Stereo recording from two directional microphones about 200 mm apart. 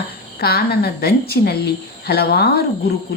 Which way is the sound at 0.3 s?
50° left (ahead or behind).